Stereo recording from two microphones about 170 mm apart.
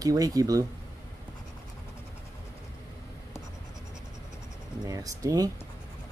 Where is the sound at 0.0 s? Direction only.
20° right (ahead or behind).